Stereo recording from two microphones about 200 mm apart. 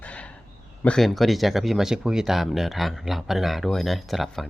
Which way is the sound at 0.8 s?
Centre (ahead or behind).